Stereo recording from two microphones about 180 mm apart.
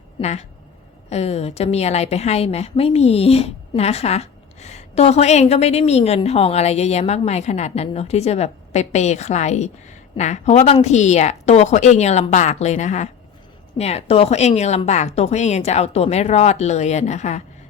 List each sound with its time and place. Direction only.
0.2 s a woman's voice: 40° left (ahead or behind)